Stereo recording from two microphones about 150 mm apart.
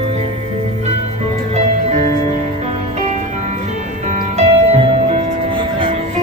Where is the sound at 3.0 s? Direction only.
50° right (ahead or behind).